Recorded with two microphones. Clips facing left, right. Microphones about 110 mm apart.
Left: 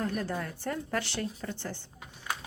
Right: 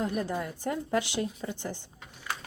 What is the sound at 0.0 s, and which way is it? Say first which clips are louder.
Speech: right 2 dB; 15° right (ahead or behind).